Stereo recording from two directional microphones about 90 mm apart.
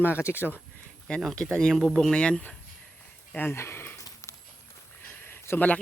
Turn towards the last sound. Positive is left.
turn(degrees=20)  # may be behind; listen again after turning